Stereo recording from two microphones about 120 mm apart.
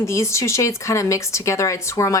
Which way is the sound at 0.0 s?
25° left (ahead or behind).